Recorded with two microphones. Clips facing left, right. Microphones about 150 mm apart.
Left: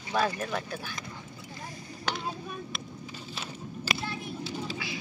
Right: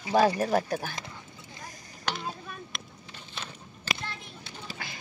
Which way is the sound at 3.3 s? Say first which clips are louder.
Left 2 dB; 5° left (ahead or behind).